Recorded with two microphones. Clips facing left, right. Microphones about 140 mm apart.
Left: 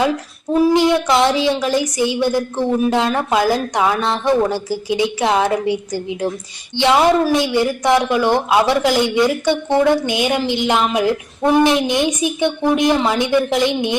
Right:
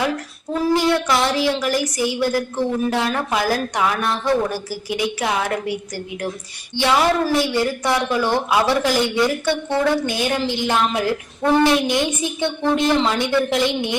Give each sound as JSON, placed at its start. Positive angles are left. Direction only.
{"t": 0.5, "sound": "speech", "side_deg": 20}